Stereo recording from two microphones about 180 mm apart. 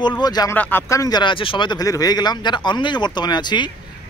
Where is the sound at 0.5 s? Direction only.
10° left (ahead or behind).